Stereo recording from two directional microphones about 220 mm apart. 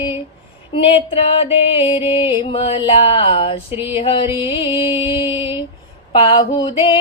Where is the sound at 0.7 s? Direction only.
25° left (ahead or behind).